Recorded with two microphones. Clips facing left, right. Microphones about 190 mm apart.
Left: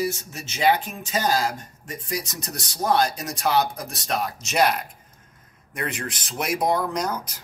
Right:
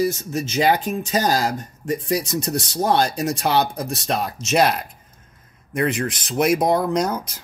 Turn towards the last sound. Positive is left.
turn(degrees=-25)  # may be behind; listen again after turning